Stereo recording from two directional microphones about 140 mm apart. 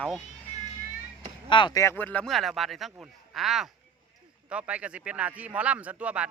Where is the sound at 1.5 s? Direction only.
35° left (ahead or behind).